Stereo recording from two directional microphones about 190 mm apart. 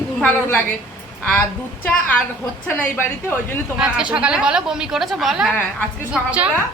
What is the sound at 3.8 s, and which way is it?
A woman's voice, 5° right (ahead or behind).